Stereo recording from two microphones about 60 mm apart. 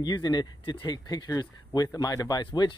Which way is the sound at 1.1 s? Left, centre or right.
Left.